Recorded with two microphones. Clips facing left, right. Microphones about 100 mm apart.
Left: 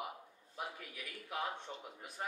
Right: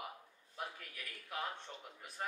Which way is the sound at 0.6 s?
10° left (ahead or behind).